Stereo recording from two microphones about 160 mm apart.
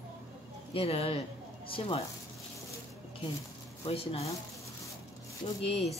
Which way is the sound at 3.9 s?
35° left (ahead or behind).